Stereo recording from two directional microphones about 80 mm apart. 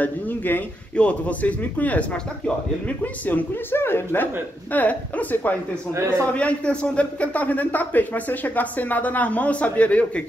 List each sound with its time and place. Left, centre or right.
0.0 s a man's voice: left